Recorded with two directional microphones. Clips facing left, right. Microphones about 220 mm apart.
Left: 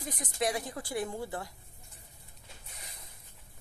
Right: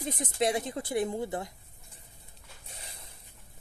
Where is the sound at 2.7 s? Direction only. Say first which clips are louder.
Right 5 dB; 30° right (ahead or behind).